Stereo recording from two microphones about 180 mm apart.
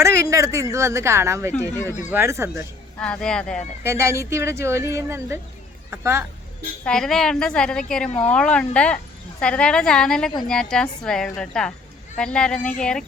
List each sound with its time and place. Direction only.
0.0 s a woman's voice: 15° right (ahead or behind)
3.0 s a woman's voice: 5° left (ahead or behind)
3.8 s a woman's voice: 15° right (ahead or behind)
6.8 s a woman's voice: 5° left (ahead or behind)